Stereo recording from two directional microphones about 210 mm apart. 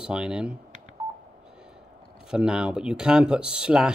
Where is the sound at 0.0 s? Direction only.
5° right (ahead or behind).